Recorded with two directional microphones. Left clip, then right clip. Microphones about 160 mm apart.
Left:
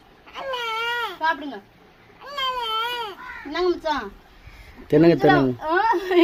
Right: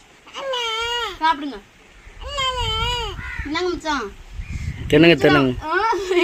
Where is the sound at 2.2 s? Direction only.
10° right (ahead or behind).